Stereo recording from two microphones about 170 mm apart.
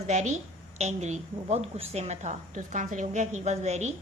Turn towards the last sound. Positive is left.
turn(degrees=-40)  # may be behind; listen again after turning